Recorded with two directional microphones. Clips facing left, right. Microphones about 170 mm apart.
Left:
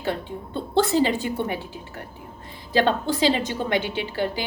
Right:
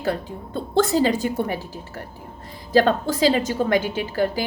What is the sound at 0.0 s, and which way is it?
A woman's voice, 40° right (ahead or behind).